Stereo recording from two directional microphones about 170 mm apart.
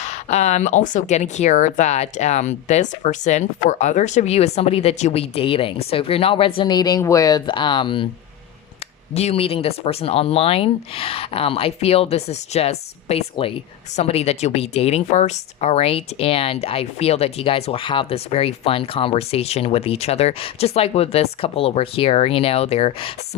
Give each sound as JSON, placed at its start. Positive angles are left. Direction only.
{"t": 0.0, "sound": "speech", "side_deg": 40}
{"t": 9.1, "sound": "speech", "side_deg": 35}